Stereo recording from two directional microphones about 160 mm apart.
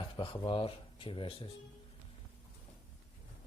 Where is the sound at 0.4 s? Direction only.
35° left (ahead or behind).